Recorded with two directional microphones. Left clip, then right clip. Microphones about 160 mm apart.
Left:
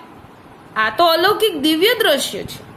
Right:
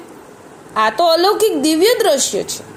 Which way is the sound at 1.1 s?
15° right (ahead or behind).